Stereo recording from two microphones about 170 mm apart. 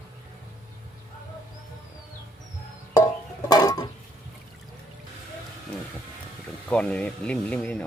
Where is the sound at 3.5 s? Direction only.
20° left (ahead or behind).